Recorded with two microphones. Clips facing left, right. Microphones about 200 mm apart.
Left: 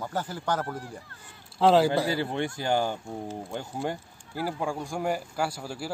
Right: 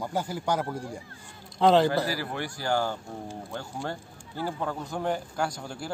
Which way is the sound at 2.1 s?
25° left (ahead or behind).